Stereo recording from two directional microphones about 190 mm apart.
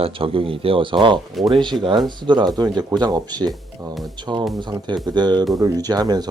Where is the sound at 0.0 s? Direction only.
30° right (ahead or behind).